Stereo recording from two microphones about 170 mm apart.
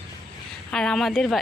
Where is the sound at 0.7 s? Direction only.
5° left (ahead or behind).